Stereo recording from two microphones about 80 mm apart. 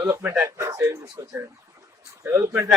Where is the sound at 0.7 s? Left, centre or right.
Right.